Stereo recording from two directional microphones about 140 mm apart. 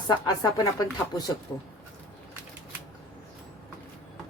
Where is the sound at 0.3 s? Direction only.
25° left (ahead or behind).